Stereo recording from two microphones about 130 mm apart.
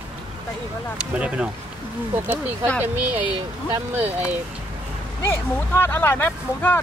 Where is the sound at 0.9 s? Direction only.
10° right (ahead or behind).